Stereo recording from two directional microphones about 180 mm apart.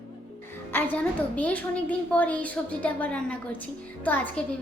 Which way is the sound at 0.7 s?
10° left (ahead or behind).